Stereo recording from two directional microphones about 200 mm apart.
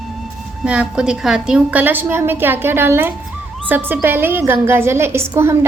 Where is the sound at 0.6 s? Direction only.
5° right (ahead or behind).